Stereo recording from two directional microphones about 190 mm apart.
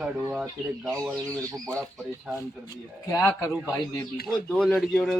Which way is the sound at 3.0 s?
15° left (ahead or behind).